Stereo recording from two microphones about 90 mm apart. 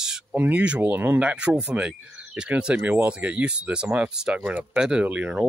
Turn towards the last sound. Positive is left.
turn(degrees=-15)  # may be behind; listen again after turning